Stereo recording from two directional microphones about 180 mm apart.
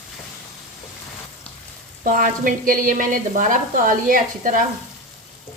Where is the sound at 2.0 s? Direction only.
45° right (ahead or behind).